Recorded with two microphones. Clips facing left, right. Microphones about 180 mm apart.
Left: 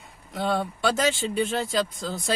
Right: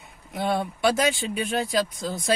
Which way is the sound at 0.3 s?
15° right (ahead or behind).